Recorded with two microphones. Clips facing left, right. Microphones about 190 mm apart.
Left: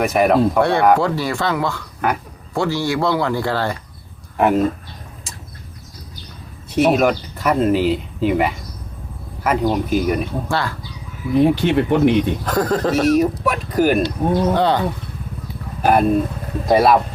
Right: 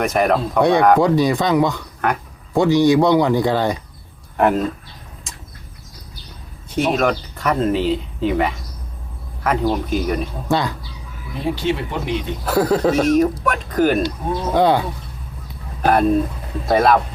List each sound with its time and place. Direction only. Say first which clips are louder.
0.0 s speech: left 3 dB; centre (ahead or behind)
0.6 s speech: right 1 dB; 15° right (ahead or behind)
2.0 s speech: even; 5° left (ahead or behind)
2.5 s speech: right 6 dB; 20° right (ahead or behind)
4.4 s speech: left 1 dB; 5° left (ahead or behind)
6.7 s speech: left 3 dB; 5° left (ahead or behind)
10.5 s speech: right 5 dB; 20° right (ahead or behind)
11.3 s speech: left 7 dB; 60° left (ahead or behind)
12.5 s speech: right 2 dB; 10° right (ahead or behind)
12.9 s speech: even; 5° left (ahead or behind)
14.5 s speech: right 1 dB; 10° right (ahead or behind)
15.8 s speech: even; 5° left (ahead or behind)